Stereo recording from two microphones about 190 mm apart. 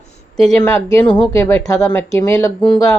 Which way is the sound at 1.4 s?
15° left (ahead or behind).